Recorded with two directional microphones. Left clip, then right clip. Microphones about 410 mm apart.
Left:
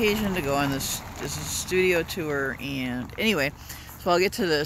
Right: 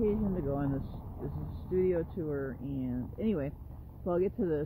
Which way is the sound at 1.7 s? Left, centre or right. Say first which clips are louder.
Left 7 dB; centre.